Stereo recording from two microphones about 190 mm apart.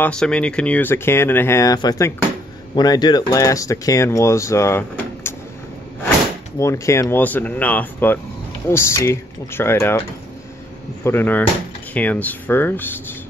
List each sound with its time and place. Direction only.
0.0 s speech: 5° left (ahead or behind)
6.6 s speech: 15° left (ahead or behind)
11.1 s speech: 10° left (ahead or behind)